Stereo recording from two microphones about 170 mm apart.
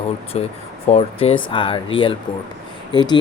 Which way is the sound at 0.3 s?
35° left (ahead or behind).